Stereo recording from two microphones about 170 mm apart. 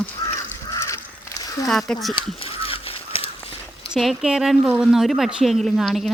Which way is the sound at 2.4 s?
35° left (ahead or behind).